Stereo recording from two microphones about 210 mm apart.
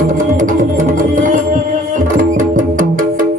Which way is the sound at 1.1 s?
40° right (ahead or behind).